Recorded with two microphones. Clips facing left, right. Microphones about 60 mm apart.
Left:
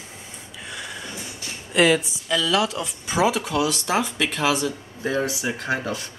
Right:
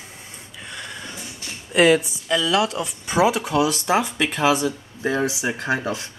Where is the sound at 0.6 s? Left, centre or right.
Centre.